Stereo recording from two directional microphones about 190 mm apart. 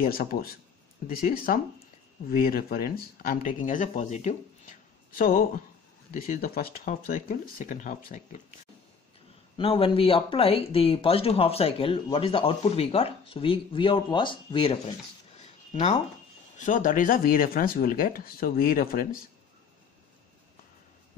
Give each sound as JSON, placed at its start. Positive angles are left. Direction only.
{"t": 0.0, "sound": "speech", "side_deg": 50}
{"t": 9.6, "sound": "speech", "side_deg": 30}